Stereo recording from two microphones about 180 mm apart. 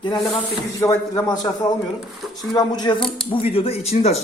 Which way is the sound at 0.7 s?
20° left (ahead or behind).